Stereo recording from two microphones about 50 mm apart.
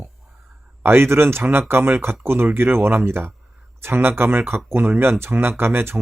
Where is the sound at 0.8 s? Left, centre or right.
Right.